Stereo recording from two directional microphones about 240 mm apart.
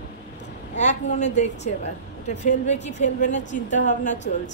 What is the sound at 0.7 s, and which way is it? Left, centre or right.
A woman's voice, left.